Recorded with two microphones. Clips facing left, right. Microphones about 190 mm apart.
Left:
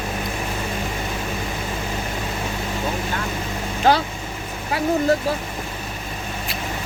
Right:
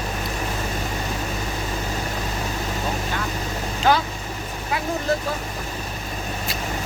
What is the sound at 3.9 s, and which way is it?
Vehicle, 35° left (ahead or behind).